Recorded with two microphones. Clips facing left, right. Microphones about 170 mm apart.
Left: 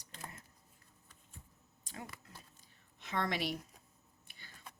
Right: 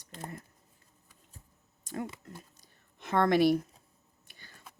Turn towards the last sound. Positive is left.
turn(degrees=-50)  # may be behind; listen again after turning